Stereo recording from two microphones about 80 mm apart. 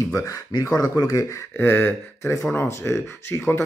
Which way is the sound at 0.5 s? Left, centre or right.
Left.